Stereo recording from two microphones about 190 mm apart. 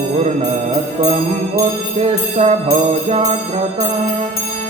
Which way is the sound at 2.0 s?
35° right (ahead or behind).